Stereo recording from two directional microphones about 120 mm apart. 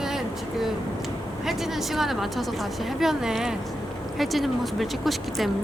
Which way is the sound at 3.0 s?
5° right (ahead or behind).